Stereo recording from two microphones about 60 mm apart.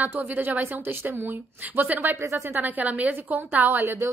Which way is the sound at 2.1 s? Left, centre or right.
Right.